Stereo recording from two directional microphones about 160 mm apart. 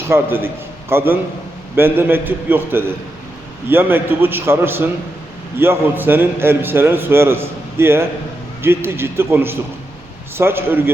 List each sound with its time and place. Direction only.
0.1 s a man's voice: 15° right (ahead or behind)